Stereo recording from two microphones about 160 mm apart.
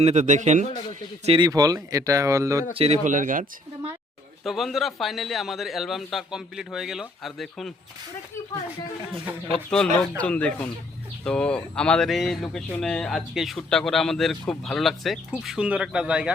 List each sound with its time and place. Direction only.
0.0 s a man's voice: 45° right (ahead or behind)
1.2 s speech: 35° right (ahead or behind)
1.5 s speech: 20° right (ahead or behind)
2.7 s a man's voice: 40° right (ahead or behind)
4.4 s speech: centre (ahead or behind)
9.6 s speech: 5° left (ahead or behind)